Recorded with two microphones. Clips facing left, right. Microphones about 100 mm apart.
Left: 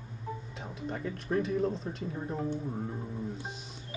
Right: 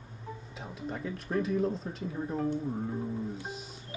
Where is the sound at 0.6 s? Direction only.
Centre (ahead or behind).